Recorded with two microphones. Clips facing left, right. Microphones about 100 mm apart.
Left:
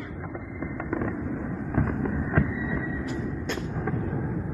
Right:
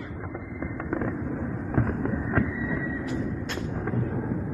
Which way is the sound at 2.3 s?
25° right (ahead or behind).